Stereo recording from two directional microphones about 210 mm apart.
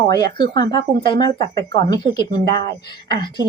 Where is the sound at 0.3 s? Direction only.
20° left (ahead or behind).